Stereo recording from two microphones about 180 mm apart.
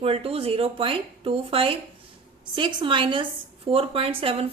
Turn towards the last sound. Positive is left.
turn(degrees=-30)  # may be behind; listen again after turning